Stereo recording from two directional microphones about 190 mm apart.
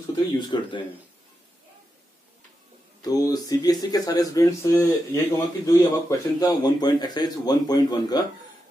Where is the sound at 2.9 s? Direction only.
20° left (ahead or behind).